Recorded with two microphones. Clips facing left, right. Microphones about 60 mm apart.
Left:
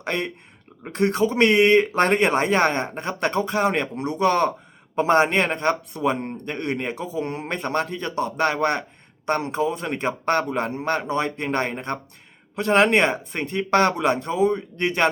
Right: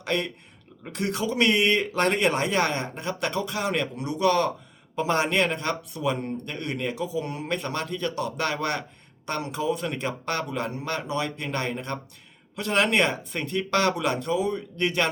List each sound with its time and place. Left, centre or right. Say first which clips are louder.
0.0 s a man's voice: left 1 dB; left